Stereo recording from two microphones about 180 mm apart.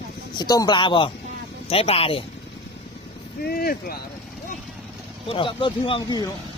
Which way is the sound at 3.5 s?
55° left (ahead or behind).